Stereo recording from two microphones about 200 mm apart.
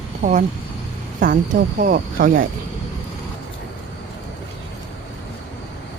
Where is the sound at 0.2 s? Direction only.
40° right (ahead or behind).